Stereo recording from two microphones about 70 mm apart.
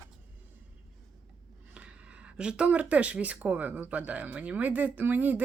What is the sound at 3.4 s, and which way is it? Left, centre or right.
Speech, right.